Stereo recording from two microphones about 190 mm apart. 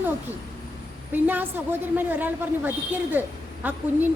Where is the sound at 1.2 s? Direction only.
10° right (ahead or behind).